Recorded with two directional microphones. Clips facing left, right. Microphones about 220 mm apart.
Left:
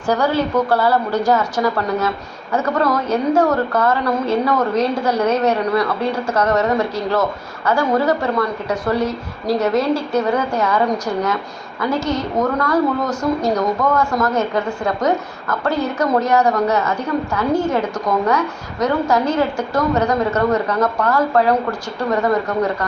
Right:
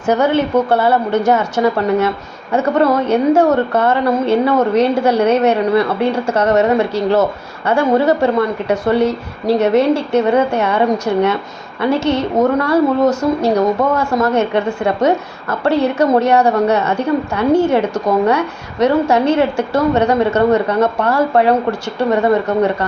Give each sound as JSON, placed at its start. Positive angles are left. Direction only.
{"t": 0.1, "sound": "a woman's voice", "side_deg": -25}